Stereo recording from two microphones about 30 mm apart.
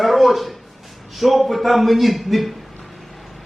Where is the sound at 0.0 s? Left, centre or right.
Centre.